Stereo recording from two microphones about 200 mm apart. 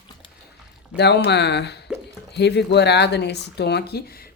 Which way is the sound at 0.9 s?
55° left (ahead or behind).